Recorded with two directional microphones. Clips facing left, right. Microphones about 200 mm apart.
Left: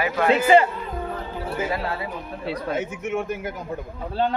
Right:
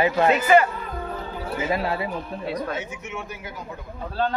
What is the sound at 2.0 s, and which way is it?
Speech, 15° left (ahead or behind).